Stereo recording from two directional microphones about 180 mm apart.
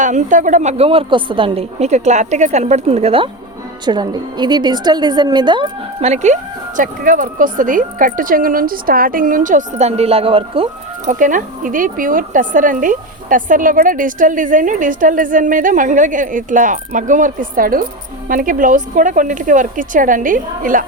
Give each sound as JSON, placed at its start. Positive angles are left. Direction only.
{"t": 0.0, "sound": "a woman's voice", "side_deg": -45}